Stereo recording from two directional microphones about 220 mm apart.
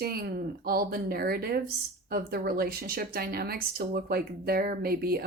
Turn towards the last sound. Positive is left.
turn(degrees=-45)  # may be behind; listen again after turning